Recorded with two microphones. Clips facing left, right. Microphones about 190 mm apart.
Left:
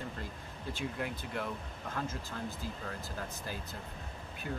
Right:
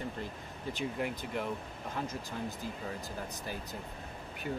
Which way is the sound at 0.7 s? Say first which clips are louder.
Right 2 dB; 15° right (ahead or behind).